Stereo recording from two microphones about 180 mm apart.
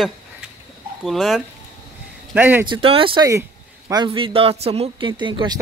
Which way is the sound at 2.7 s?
30° right (ahead or behind).